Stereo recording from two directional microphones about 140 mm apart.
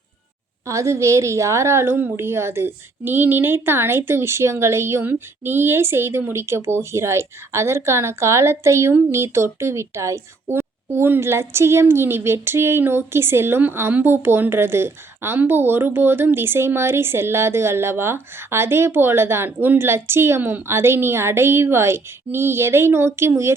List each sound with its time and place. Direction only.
0.7 s a woman's voice: 20° right (ahead or behind)